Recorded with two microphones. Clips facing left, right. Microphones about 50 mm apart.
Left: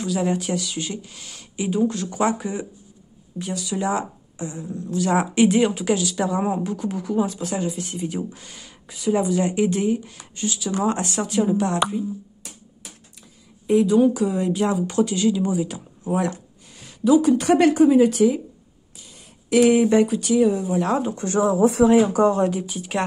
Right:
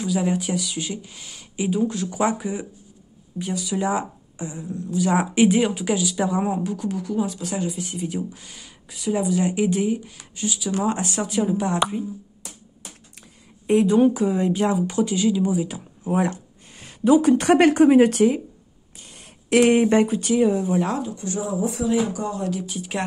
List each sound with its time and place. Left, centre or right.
0.0 s a woman's voice: centre
4.6 s a woman's voice: centre
13.8 s speech: right
14.2 s speech: centre
16.7 s speech: right
18.9 s a sound: right
19.7 s speech: right
20.3 s speech: centre
21.0 s speech: left
22.1 s speech: left
22.7 s a woman's voice: centre